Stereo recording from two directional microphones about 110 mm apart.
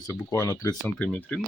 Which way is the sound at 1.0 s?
15° left (ahead or behind).